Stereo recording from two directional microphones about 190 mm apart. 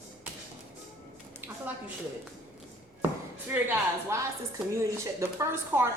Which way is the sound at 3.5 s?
10° right (ahead or behind).